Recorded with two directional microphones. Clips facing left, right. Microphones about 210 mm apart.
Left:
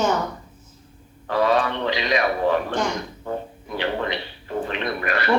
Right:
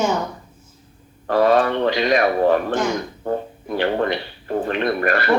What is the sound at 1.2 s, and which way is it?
A man's voice, 50° right (ahead or behind).